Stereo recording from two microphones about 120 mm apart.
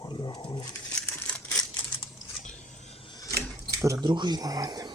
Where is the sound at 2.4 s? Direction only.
90° left; by 3.0 s 70° left (ahead or behind).